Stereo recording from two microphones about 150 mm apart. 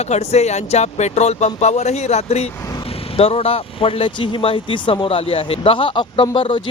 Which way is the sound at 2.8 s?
40° left (ahead or behind).